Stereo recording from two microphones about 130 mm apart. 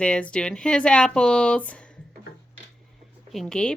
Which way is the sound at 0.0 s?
10° left (ahead or behind).